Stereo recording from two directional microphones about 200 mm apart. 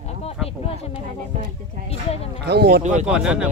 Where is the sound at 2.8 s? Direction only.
35° right (ahead or behind).